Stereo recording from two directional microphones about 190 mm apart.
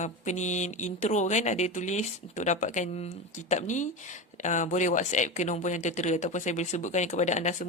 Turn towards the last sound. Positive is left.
turn(degrees=40)  # may be behind; listen again after turning